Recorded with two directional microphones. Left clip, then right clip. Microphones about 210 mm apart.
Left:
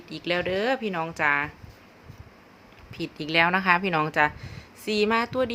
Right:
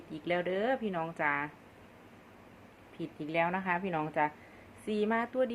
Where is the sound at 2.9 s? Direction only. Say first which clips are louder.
Left 9 dB; 35° left (ahead or behind).